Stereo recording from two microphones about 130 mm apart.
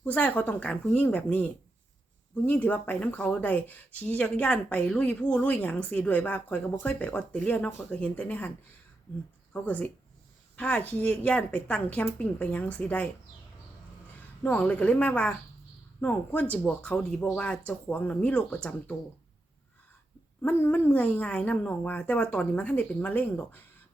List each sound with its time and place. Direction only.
0.0 s speech: 10° left (ahead or behind)
2.5 s speech: 15° left (ahead or behind)
14.4 s speech: 10° left (ahead or behind)
20.4 s speech: 15° left (ahead or behind)